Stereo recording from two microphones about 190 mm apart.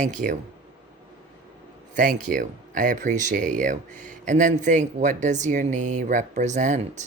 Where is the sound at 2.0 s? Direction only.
45° right (ahead or behind).